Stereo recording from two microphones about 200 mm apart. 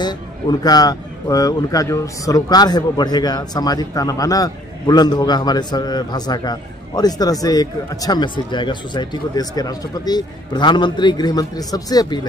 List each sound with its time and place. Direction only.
0.0 s a man's voice: 20° left (ahead or behind)